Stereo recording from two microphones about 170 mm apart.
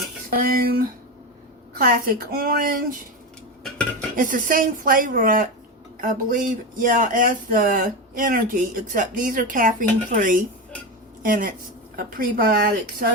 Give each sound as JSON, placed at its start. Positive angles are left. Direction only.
{"t": 0.3, "sound": "a woman's voice", "side_deg": -60}
{"t": 3.6, "sound": "cutlery", "side_deg": 0}
{"t": 4.2, "sound": "a woman's voice", "side_deg": -55}